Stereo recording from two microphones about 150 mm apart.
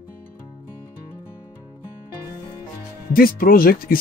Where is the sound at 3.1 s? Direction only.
75° left (ahead or behind).